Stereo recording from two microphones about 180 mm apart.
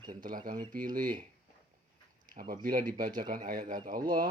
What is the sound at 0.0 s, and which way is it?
Speech, 25° right (ahead or behind).